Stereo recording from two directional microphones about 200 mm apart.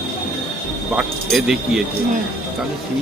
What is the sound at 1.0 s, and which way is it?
Speech, centre (ahead or behind).